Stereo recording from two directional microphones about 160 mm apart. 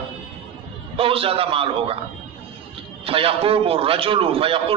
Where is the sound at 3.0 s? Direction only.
35° right (ahead or behind).